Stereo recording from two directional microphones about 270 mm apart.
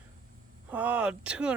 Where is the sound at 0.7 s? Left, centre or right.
Centre.